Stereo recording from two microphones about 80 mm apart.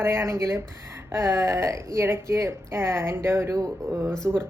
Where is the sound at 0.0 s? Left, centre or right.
Right.